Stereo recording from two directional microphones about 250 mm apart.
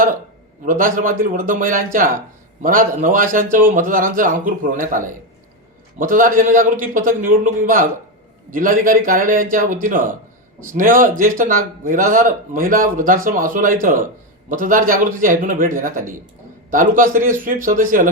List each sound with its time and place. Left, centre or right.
0.6 s a man's voice: right